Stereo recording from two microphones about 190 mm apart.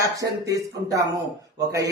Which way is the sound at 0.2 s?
20° right (ahead or behind).